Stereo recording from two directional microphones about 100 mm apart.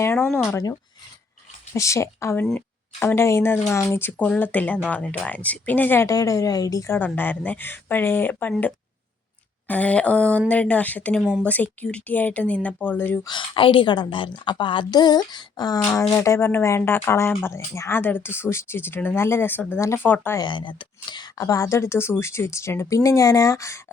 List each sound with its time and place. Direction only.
0.0 s speech: 25° left (ahead or behind)
6.1 s speech: 35° left (ahead or behind)
9.6 s speech: 15° left (ahead or behind)
11.2 s speech: 10° right (ahead or behind)
11.4 s speech: 15° left (ahead or behind)
13.2 s a woman's voice: 55° left (ahead or behind)
16.1 s speech: 30° left (ahead or behind)
20.4 s a woman's voice: 55° left (ahead or behind)
21.4 s speech: 30° left (ahead or behind)